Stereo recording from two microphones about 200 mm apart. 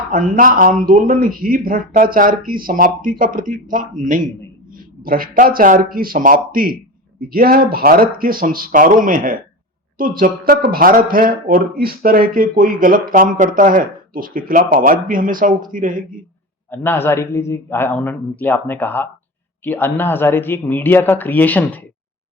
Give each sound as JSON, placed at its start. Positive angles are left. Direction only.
{"t": 0.1, "sound": "speech", "side_deg": -45}
{"t": 16.6, "sound": "a man's voice", "side_deg": 10}